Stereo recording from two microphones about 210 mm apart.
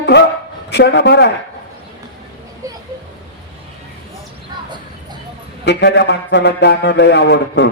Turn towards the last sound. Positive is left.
turn(degrees=55)  # may be behind; listen again after turning